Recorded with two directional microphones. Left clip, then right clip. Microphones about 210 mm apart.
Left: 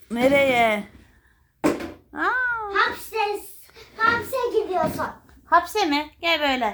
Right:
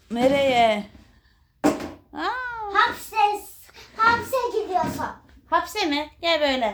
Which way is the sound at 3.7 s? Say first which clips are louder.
Even; 15° right (ahead or behind).